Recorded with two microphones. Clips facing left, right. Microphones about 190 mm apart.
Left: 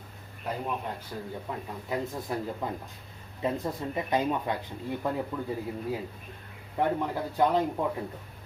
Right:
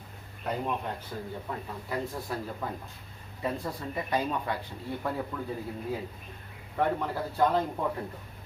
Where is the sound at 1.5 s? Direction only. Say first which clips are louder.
Left 2 dB; 10° left (ahead or behind).